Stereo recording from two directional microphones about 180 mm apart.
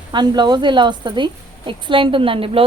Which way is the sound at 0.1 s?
25° right (ahead or behind).